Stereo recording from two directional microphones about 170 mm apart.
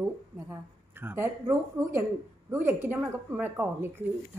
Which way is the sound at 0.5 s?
10° right (ahead or behind).